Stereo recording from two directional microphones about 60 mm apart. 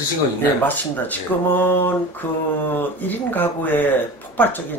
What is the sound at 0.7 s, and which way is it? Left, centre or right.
Speech, left.